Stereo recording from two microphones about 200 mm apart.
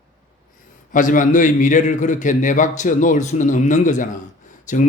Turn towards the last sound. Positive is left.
turn(degrees=40)  # may be behind; listen again after turning